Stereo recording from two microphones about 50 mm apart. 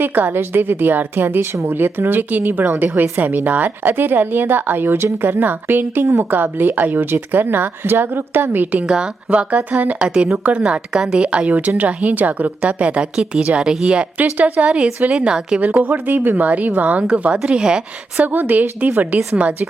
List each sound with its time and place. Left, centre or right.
0.0 s speech: right
8.9 s a woman's voice: right
10.6 s a woman's voice: centre
14.2 s a woman's voice: right
14.7 s a woman's voice: centre
15.8 s speech: right; by 18.3 s centre
18.3 s a woman's voice: right